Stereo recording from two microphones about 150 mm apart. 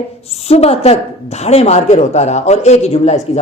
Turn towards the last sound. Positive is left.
turn(degrees=45)  # may be behind; listen again after turning